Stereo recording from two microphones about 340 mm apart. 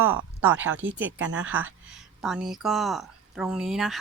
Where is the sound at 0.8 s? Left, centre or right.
Right.